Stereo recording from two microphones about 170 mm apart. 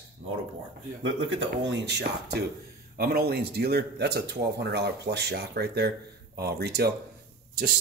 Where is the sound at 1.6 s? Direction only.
90° right; by 6.9 s 70° right (ahead or behind).